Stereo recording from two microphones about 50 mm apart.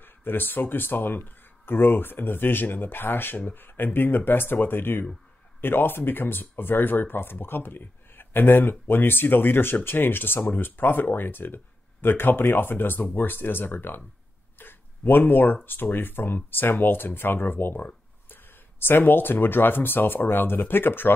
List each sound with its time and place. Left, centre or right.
0.0 s speech: left